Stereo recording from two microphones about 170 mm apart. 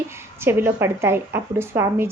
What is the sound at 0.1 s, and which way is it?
A woman's voice, 15° right (ahead or behind).